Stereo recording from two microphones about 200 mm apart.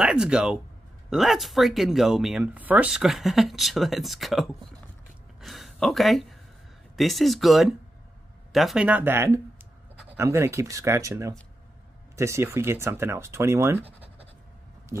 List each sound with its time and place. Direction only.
0.0 s speech: 5° right (ahead or behind)
13.8 s scratch: 30° right (ahead or behind)